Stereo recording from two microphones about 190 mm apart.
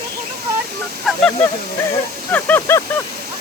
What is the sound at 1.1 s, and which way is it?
Honk, centre (ahead or behind).